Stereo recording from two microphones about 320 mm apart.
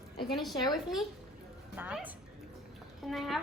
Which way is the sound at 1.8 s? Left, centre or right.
Centre.